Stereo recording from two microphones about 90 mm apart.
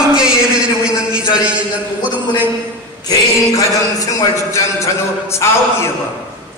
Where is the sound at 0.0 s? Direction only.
10° right (ahead or behind).